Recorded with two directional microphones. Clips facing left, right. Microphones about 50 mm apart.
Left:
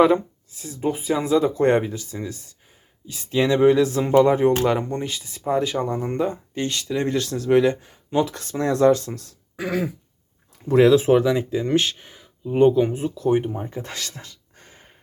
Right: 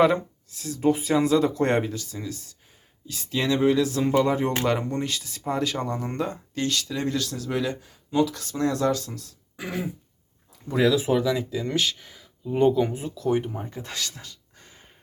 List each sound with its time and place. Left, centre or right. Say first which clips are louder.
0.0 s speech: left 3 dB; centre
2.0 s speech: left 3 dB; left
4.6 s speech: left 3 dB; centre; by 9.3 s left
9.6 s throat clearing: left 6 dB; left
10.7 s speech: left 7 dB; left